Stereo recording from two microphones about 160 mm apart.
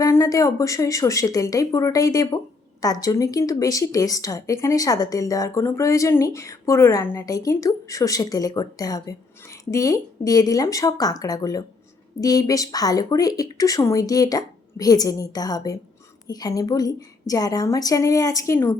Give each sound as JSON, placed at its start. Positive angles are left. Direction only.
{"t": 0.0, "sound": "a woman's voice", "side_deg": 20}